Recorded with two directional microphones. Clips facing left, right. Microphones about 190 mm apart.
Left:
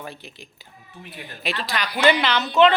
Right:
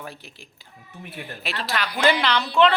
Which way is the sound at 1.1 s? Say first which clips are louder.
Left 3 dB; 5° right (ahead or behind).